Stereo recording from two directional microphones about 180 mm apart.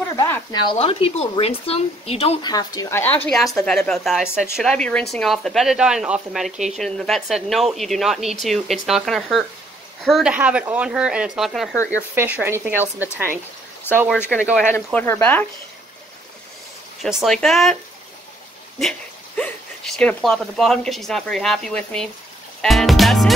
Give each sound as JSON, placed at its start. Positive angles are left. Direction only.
{"t": 0.1, "sound": "a sound", "side_deg": 20}
{"t": 0.7, "sound": "speech", "side_deg": 30}
{"t": 2.4, "sound": "speech", "side_deg": 20}
{"t": 3.3, "sound": "a woman's voice", "side_deg": 0}
{"t": 11.7, "sound": "speech", "side_deg": 15}
{"t": 12.2, "sound": "a woman's voice", "side_deg": -10}
{"t": 14.7, "sound": "speech", "side_deg": 10}
{"t": 17.0, "sound": "a woman's voice", "side_deg": 0}
{"t": 18.8, "sound": "a woman's voice", "side_deg": 5}